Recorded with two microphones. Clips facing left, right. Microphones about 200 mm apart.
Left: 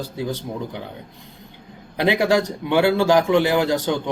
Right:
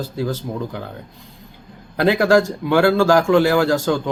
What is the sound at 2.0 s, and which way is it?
Speech, 15° left (ahead or behind).